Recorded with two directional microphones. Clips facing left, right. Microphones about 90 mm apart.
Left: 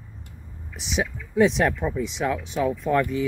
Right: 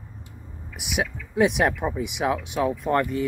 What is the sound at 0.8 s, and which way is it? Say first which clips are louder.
Speech: even; 10° right (ahead or behind).